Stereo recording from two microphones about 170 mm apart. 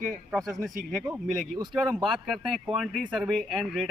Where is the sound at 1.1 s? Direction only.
25° right (ahead or behind).